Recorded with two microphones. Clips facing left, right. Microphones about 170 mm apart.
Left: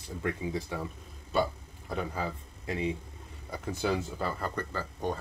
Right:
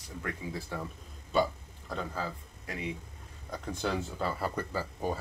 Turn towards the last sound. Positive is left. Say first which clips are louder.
# even
turn(degrees=-5)  # may be behind; listen again after turning